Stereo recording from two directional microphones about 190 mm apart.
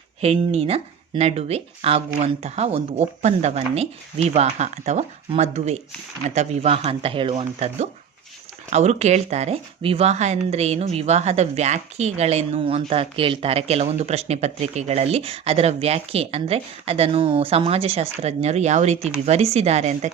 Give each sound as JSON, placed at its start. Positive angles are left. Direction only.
{"t": 0.2, "sound": "speech", "side_deg": -30}